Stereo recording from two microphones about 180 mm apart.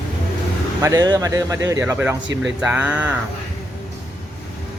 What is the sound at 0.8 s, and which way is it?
Speech, 20° right (ahead or behind).